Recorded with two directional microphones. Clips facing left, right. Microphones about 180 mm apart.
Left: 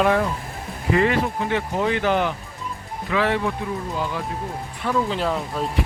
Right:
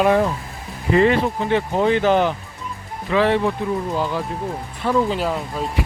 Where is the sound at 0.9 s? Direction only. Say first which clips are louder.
Right 4 dB; 30° right (ahead or behind).